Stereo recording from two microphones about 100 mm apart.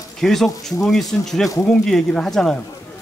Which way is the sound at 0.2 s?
5° left (ahead or behind).